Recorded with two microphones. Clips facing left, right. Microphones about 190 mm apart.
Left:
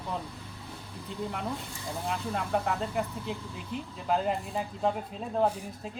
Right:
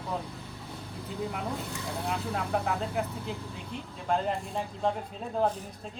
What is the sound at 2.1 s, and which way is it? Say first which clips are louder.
Speech: left 1 dB; centre (ahead or behind).